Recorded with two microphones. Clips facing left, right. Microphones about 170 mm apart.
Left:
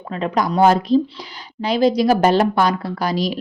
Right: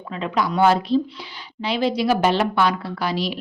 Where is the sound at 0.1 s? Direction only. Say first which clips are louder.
Left 3 dB; 45° left (ahead or behind).